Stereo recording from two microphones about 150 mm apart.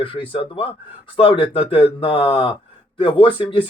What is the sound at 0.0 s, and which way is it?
Speech, 35° left (ahead or behind).